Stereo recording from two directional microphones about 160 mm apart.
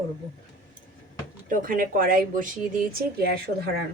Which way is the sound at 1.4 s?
55° right (ahead or behind).